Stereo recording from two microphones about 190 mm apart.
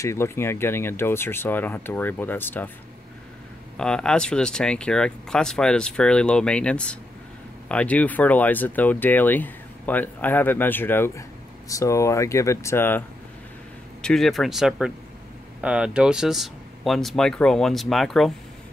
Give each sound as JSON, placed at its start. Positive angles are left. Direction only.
{"t": 0.0, "sound": "speech", "side_deg": 15}
{"t": 3.7, "sound": "speech", "side_deg": 5}
{"t": 14.0, "sound": "speech", "side_deg": 0}